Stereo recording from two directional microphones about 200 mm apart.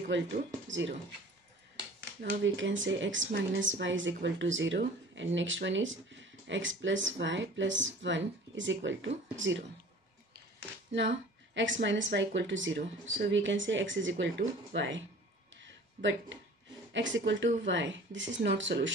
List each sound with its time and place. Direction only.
0.1 s speech: 65° right (ahead or behind)
2.4 s speech: 70° right (ahead or behind)
10.9 s speech: 65° right (ahead or behind)
15.5 s a sound: 65° right (ahead or behind)
16.9 s speech: 65° right (ahead or behind)